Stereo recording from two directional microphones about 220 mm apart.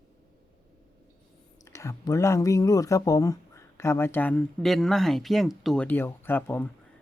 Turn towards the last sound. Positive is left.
turn(degrees=10)  # may be behind; listen again after turning